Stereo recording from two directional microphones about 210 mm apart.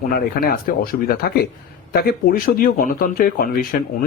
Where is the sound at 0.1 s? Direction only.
45° left (ahead or behind).